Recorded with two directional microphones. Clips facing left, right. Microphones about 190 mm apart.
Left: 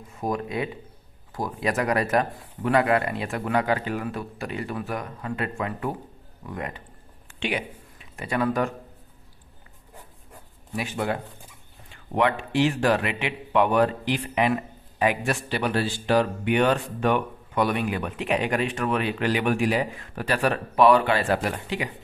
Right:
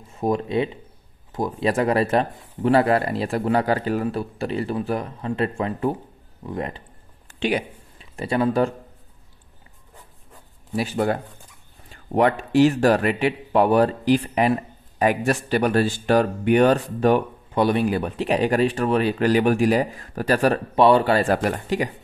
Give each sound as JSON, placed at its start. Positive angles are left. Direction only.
{"t": 0.2, "sound": "a man's voice", "side_deg": -25}
{"t": 7.2, "sound": "a sound", "side_deg": -40}
{"t": 10.8, "sound": "a man's voice", "side_deg": -40}